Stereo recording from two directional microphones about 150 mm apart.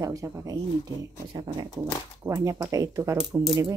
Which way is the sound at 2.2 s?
20° right (ahead or behind).